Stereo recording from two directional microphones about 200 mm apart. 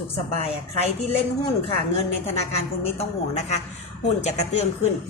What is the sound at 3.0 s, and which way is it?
A woman's voice, 35° left (ahead or behind).